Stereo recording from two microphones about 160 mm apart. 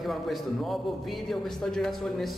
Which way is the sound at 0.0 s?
Centre (ahead or behind).